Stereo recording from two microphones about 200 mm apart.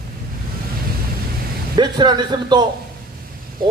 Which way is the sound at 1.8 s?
20° right (ahead or behind).